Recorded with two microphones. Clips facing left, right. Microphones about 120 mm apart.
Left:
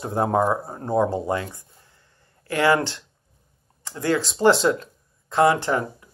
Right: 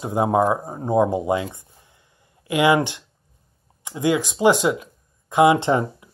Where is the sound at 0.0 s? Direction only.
10° right (ahead or behind).